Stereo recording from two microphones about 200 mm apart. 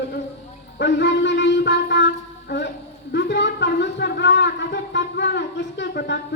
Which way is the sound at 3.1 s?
60° left (ahead or behind).